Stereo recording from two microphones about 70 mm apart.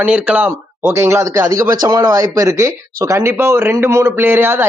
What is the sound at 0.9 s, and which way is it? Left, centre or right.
Speech, right.